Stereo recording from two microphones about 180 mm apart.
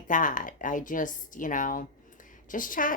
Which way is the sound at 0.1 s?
45° left (ahead or behind).